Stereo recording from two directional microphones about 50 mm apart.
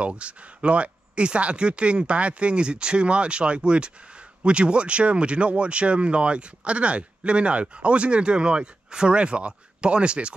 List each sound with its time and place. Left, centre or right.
0.0 s speech: right